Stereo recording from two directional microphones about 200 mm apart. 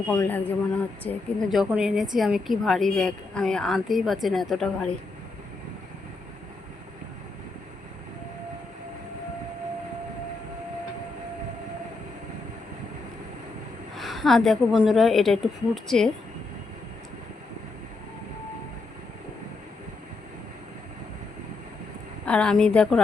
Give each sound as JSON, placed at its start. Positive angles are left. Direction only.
{"t": 0.1, "sound": "a woman's voice", "side_deg": 10}
{"t": 13.9, "sound": "a woman's voice", "side_deg": 0}
{"t": 22.3, "sound": "a woman's voice", "side_deg": 5}